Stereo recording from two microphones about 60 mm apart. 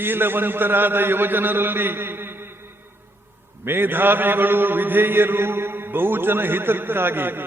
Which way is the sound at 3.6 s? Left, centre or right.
Right.